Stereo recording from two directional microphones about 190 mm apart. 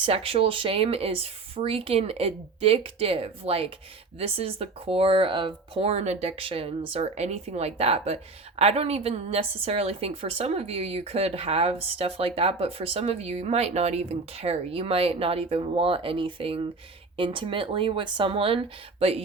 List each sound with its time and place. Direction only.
0.0 s speech: 30° right (ahead or behind)